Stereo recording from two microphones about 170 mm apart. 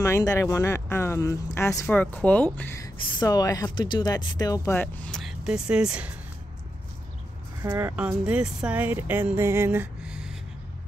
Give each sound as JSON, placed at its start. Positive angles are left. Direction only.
{"t": 0.0, "sound": "speech", "side_deg": 20}
{"t": 4.7, "sound": "speech", "side_deg": 5}
{"t": 7.6, "sound": "speech", "side_deg": -15}